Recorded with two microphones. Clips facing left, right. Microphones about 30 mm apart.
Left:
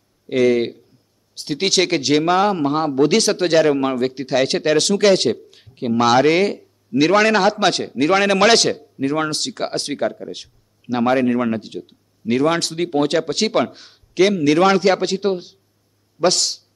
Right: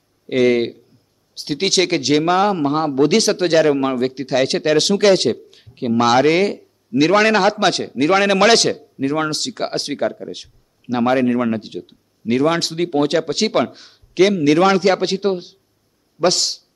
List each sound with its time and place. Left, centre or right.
0.3 s speech: centre
1.6 s speech: centre
4.7 s speech: centre
9.7 s speech: centre
9.9 s speech: centre
11.6 s speech: centre
12.3 s speech: centre